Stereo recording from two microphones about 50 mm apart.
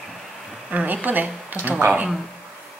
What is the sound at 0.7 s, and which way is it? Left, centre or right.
A woman's voice, right.